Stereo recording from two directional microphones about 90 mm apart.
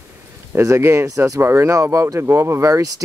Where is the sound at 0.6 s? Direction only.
30° right (ahead or behind).